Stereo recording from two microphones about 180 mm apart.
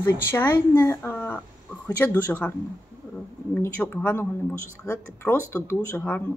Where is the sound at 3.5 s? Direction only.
10° left (ahead or behind).